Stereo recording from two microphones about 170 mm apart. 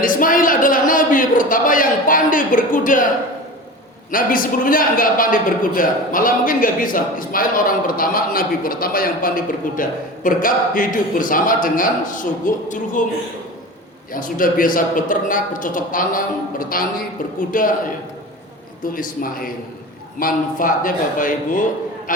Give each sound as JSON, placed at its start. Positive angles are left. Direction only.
{"t": 0.0, "sound": "speech", "side_deg": 55}
{"t": 4.1, "sound": "a man's voice", "side_deg": 55}
{"t": 14.1, "sound": "a man's voice", "side_deg": 55}
{"t": 18.9, "sound": "a man's voice", "side_deg": 55}